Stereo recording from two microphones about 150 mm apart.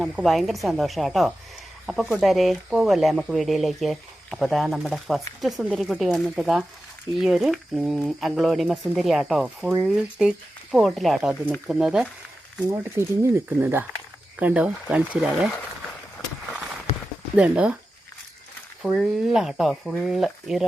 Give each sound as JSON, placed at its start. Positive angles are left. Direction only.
{"t": 0.0, "sound": "speech", "side_deg": 0}
{"t": 12.6, "sound": "speech", "side_deg": -20}
{"t": 17.3, "sound": "speech", "side_deg": -10}
{"t": 18.9, "sound": "speech", "side_deg": 0}